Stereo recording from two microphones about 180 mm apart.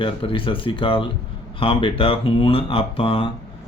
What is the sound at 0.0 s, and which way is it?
Speech, 30° left (ahead or behind).